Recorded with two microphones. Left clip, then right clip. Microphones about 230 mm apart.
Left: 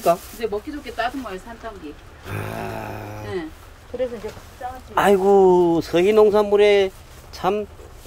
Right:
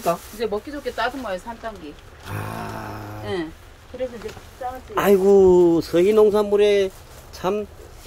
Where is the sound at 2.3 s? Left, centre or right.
Centre.